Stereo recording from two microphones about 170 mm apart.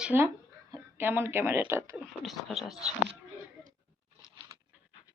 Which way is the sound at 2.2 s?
Centre (ahead or behind).